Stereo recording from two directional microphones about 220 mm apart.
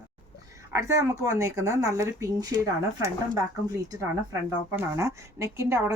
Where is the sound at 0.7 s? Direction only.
15° right (ahead or behind).